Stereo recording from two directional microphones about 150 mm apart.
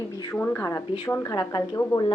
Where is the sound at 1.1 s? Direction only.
25° left (ahead or behind).